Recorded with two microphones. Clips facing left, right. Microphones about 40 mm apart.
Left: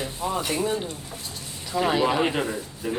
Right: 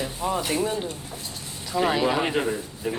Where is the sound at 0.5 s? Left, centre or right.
Left.